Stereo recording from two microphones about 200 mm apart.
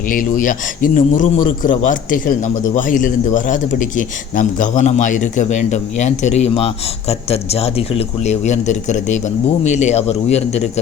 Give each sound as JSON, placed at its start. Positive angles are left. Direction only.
{"t": 0.1, "sound": "a man's voice", "side_deg": 45}